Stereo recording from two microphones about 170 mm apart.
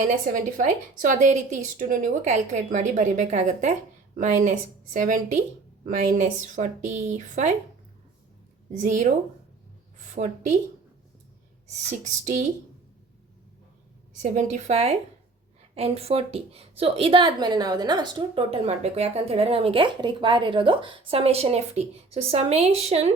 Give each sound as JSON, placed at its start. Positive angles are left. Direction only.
{"t": 0.0, "sound": "a woman's voice", "side_deg": -50}
{"t": 8.8, "sound": "a woman's voice", "side_deg": -45}
{"t": 10.2, "sound": "a woman's voice", "side_deg": -55}
{"t": 11.9, "sound": "a woman's voice", "side_deg": -45}
{"t": 14.2, "sound": "a woman's voice", "side_deg": -45}